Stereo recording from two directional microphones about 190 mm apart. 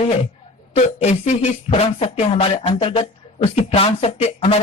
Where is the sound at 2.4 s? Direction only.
30° left (ahead or behind).